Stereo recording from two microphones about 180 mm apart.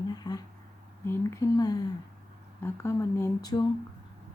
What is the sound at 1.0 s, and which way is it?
A woman's voice, 15° left (ahead or behind).